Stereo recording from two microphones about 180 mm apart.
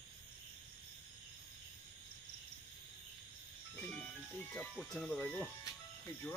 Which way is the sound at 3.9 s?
5° left (ahead or behind).